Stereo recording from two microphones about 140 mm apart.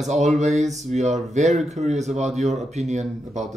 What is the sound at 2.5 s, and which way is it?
Speech, 55° right (ahead or behind).